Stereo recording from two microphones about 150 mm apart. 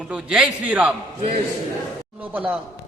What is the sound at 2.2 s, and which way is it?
Speech, 10° right (ahead or behind).